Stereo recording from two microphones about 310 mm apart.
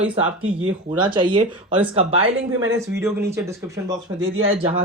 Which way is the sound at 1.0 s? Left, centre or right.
Centre.